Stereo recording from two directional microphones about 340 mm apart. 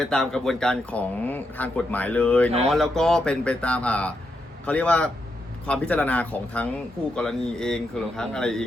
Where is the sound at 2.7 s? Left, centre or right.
Centre.